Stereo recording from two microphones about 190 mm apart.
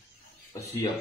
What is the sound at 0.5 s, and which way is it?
Speech, 20° left (ahead or behind).